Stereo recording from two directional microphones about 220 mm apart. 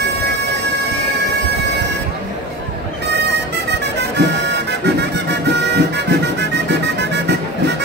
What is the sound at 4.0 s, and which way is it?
Music, 50° right (ahead or behind).